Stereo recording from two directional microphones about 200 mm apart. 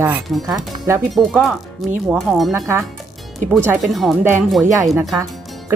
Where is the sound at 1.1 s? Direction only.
Centre (ahead or behind).